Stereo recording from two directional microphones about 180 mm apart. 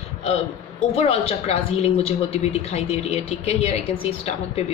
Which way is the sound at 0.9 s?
35° left (ahead or behind).